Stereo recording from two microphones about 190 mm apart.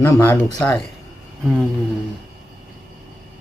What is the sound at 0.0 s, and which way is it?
Speech, 15° left (ahead or behind).